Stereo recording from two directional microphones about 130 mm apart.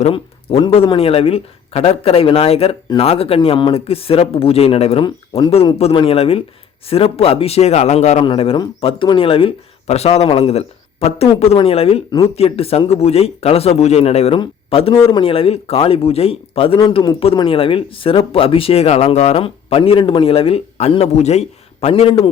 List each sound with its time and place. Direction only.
0.1 s speech: 45° left (ahead or behind); by 8.2 s 60° left (ahead or behind)
8.2 s a man's voice: 45° left (ahead or behind)